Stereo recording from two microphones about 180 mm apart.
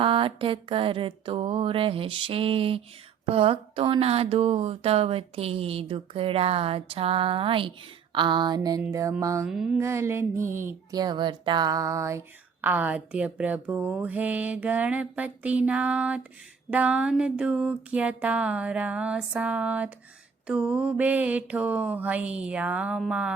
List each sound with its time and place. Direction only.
0.0 s mantra: 30° right (ahead or behind)
3.2 s speech: 30° right (ahead or behind)
8.1 s mantra: 25° right (ahead or behind)
8.8 s speech: 15° right (ahead or behind)
9.5 s speech: 5° right (ahead or behind)
10.6 s mantra: 15° right (ahead or behind)
12.6 s speech: 10° right (ahead or behind)